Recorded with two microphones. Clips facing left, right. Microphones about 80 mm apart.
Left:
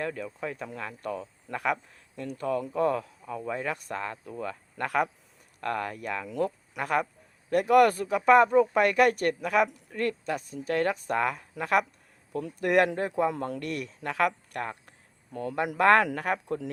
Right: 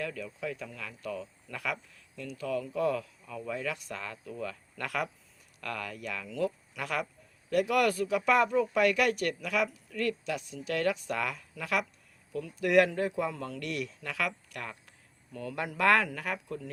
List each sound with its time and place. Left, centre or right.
0.0 s speech: left